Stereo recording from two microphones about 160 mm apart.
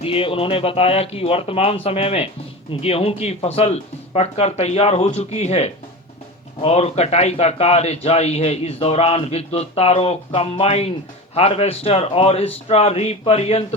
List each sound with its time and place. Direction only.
0.0 s a man's voice: 35° left (ahead or behind)